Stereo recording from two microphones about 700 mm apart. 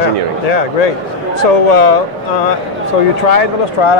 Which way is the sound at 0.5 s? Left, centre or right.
Left.